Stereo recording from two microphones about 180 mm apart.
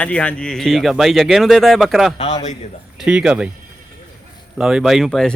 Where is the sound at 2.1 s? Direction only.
35° left (ahead or behind).